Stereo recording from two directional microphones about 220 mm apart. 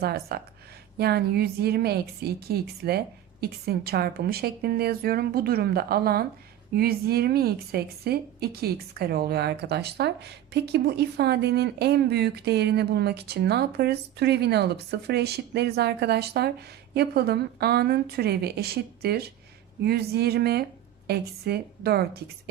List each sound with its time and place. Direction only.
0.0 s a woman's voice: 45° right (ahead or behind)